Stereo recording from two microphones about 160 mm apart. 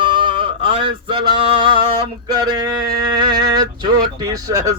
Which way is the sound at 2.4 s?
25° right (ahead or behind).